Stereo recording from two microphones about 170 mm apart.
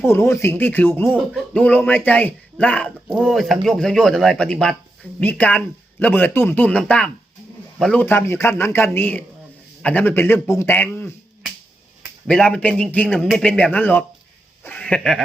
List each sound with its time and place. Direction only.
0.0 s a man's voice: 15° left (ahead or behind)
1.0 s a man's voice: centre (ahead or behind)
12.3 s a man's voice: 5° left (ahead or behind)
14.6 s a sound: 10° left (ahead or behind)